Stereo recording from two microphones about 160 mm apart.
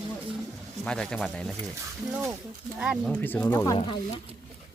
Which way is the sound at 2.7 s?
5° right (ahead or behind).